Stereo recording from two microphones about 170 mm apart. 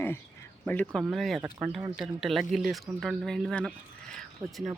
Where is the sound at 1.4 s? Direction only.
10° right (ahead or behind).